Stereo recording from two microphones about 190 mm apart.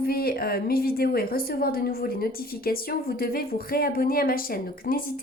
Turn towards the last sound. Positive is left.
turn(degrees=50)  # may be behind; listen again after turning